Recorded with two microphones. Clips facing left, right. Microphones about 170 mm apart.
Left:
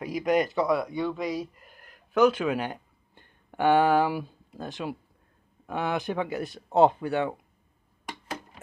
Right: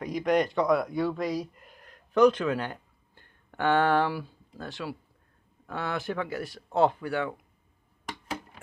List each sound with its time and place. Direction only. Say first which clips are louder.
0.0 s speech: even; 5° left (ahead or behind); by 7.3 s 25° left (ahead or behind)